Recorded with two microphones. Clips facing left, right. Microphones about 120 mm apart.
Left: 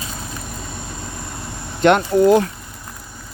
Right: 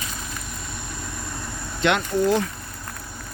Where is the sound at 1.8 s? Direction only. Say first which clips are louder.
Left 8 dB; 50° left (ahead or behind).